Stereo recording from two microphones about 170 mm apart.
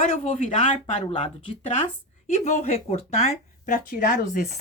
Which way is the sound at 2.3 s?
45° left (ahead or behind).